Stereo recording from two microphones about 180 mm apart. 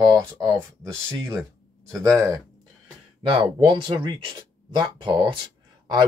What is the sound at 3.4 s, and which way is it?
Speech, 25° right (ahead or behind).